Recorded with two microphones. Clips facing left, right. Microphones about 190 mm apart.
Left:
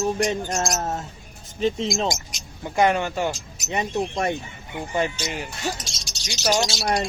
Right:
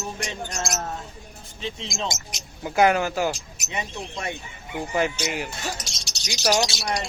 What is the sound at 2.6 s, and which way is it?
Speech, 5° right (ahead or behind).